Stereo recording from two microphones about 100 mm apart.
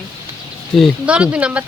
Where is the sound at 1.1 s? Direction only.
10° right (ahead or behind).